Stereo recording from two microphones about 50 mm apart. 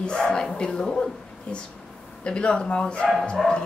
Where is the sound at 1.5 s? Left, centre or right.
Left.